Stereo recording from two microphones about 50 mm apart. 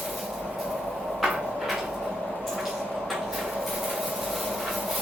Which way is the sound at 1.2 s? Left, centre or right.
Centre.